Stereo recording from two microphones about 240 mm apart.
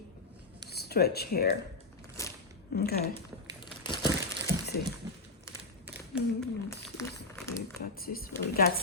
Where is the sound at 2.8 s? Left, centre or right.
Left.